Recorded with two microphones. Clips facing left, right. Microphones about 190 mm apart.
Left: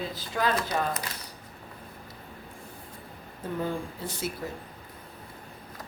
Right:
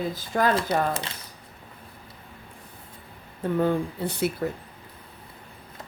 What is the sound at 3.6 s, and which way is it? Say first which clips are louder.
Speech: right 8 dB; 60° right (ahead or behind).